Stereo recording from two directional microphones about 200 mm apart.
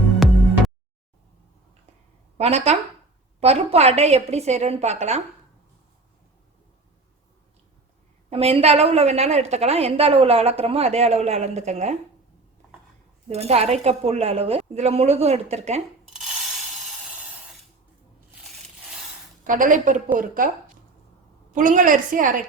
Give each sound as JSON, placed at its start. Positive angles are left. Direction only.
{"t": 2.4, "sound": "a woman's voice", "side_deg": -30}
{"t": 8.3, "sound": "a woman's voice", "side_deg": -30}
{"t": 13.2, "sound": "a woman's voice", "side_deg": -30}
{"t": 19.5, "sound": "a woman's voice", "side_deg": -40}
{"t": 21.5, "sound": "a woman's voice", "side_deg": -40}